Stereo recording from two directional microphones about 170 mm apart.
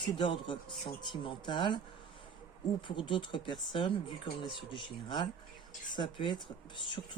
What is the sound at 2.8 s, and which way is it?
Speech, 30° left (ahead or behind).